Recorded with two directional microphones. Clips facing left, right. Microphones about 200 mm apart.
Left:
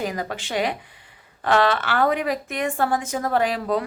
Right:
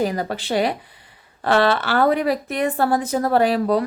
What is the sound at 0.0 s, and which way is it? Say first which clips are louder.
Speech: right 5 dB; 35° right (ahead or behind).